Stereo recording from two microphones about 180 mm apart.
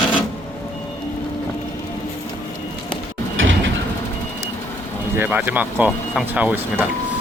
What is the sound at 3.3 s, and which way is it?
Mechanisms, 90° right.